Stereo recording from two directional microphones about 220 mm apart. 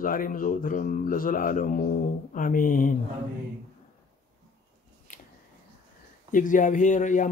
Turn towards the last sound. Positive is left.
turn(degrees=35)  # may be behind; listen again after turning